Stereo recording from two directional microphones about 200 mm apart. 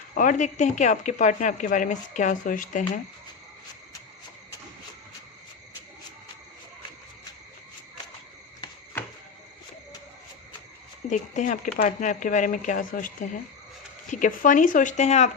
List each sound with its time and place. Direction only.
0.2 s speech: 40° left (ahead or behind)
11.1 s speech: 40° left (ahead or behind)